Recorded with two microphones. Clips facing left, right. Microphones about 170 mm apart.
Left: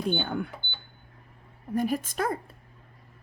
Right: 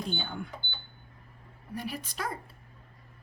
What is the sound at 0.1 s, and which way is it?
Speech, 60° left (ahead or behind).